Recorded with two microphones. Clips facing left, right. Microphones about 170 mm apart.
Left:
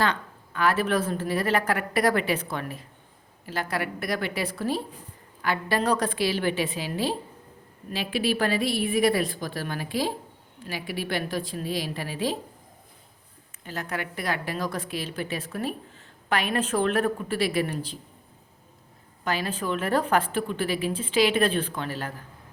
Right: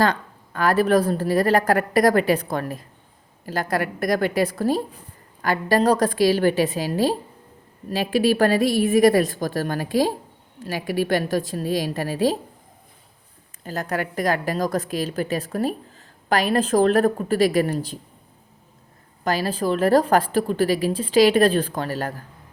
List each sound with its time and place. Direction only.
0.0 s a woman's voice: 40° right (ahead or behind)
13.7 s a woman's voice: 40° right (ahead or behind)
19.2 s a woman's voice: 35° right (ahead or behind)